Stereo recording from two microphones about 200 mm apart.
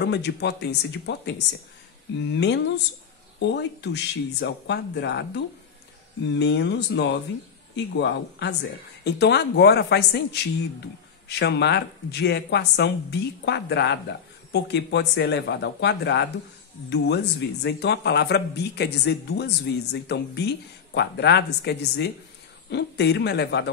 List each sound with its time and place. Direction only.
0.0 s speech: 55° left (ahead or behind)